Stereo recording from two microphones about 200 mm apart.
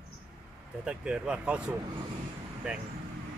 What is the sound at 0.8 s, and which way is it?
Speech, 5° right (ahead or behind).